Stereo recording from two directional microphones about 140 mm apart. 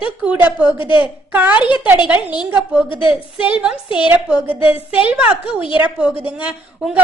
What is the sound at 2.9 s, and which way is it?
Speech, 40° left (ahead or behind).